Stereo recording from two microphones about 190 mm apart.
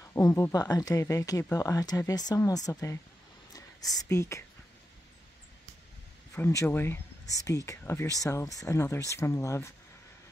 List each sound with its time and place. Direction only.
0.1 s speech: 15° left (ahead or behind)
6.3 s speech: 15° left (ahead or behind)